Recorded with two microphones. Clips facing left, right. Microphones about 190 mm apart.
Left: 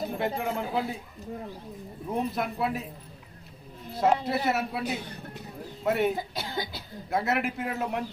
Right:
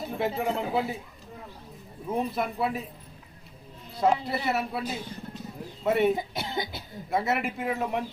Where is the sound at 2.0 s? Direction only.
Centre (ahead or behind).